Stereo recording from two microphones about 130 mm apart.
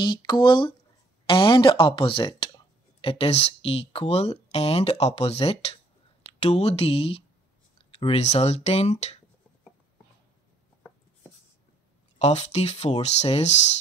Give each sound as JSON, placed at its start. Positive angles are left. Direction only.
{"t": 0.0, "sound": "speech", "side_deg": 35}
{"t": 12.2, "sound": "speech", "side_deg": 60}